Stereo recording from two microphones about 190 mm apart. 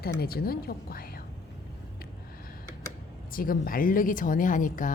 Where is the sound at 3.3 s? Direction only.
50° left (ahead or behind).